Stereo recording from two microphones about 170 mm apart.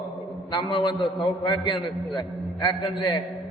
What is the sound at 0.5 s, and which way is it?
A man's voice, 25° left (ahead or behind).